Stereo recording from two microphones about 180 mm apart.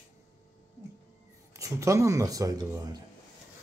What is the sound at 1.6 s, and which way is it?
Speech, 15° right (ahead or behind).